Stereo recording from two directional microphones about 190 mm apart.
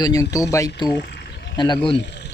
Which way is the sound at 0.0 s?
20° left (ahead or behind).